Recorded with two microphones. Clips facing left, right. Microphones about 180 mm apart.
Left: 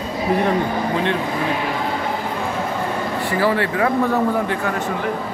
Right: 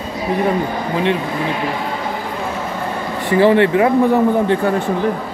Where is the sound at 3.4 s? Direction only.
25° right (ahead or behind).